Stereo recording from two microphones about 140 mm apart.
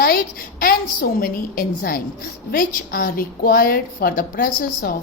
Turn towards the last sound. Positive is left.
turn(degrees=85)